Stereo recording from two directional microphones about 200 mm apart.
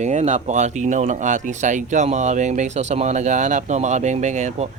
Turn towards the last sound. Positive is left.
turn(degrees=-35)  # may be behind; listen again after turning